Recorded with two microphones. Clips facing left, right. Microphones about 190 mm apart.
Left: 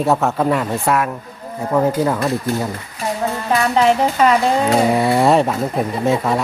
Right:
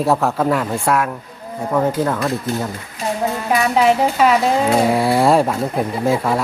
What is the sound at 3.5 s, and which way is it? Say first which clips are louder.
Speech: even; 10° right (ahead or behind).